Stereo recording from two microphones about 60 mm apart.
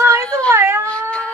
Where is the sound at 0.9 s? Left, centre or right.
Centre.